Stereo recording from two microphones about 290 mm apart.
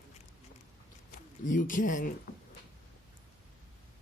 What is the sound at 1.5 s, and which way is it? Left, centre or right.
Speech, left.